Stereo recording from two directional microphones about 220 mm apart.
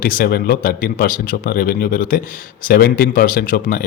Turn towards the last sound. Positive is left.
turn(degrees=40)  # may be behind; listen again after turning